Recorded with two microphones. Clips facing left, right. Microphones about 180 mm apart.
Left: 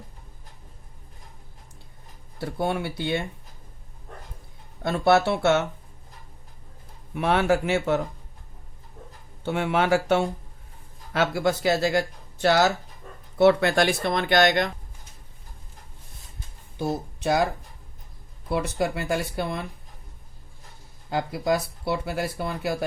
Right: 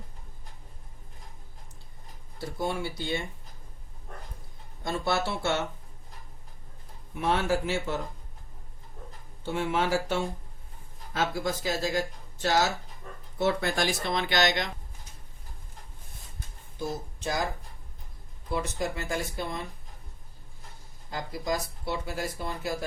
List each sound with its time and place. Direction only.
2.4 s speech: 60° left (ahead or behind)
4.8 s speech: 65° left (ahead or behind)
7.2 s speech: 65° left (ahead or behind)
9.4 s speech: 65° left (ahead or behind)
16.7 s speech: 65° left (ahead or behind)
21.1 s speech: 65° left (ahead or behind)